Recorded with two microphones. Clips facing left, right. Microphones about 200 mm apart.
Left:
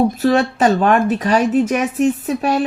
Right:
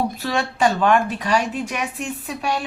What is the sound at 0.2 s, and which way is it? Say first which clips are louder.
Speech: left 6 dB; 40° left (ahead or behind).